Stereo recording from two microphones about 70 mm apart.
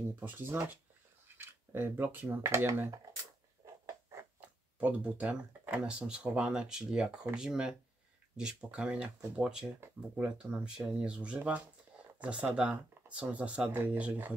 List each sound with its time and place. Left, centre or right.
0.1 s speech: right
3.6 s a sound: right
4.7 s speech: centre